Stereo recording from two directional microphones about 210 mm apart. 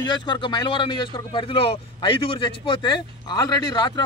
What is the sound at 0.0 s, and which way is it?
A man's voice, 20° left (ahead or behind).